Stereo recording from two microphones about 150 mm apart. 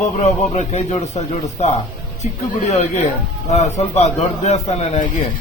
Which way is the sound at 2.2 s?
50° left (ahead or behind).